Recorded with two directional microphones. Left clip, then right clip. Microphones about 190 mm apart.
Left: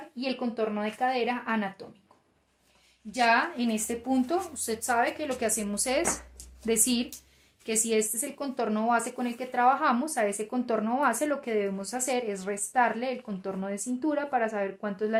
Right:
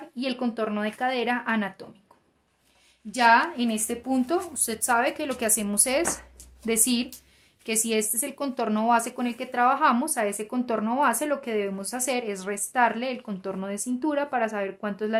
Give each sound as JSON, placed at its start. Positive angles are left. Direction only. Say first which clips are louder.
{"t": 0.2, "sound": "speech", "louder": "right 2 dB", "side_deg": -35}
{"t": 3.1, "sound": "speech", "louder": "right 5 dB", "side_deg": -30}
{"t": 3.5, "sound": "speech", "louder": "right 2 dB", "side_deg": -20}
{"t": 4.5, "sound": "speech", "louder": "right 3 dB", "side_deg": -35}